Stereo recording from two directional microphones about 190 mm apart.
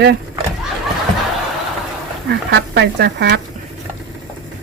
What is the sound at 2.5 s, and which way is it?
Speech, 65° right (ahead or behind).